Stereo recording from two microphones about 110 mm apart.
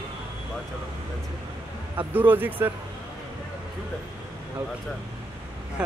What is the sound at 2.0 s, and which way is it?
Speech, 15° right (ahead or behind).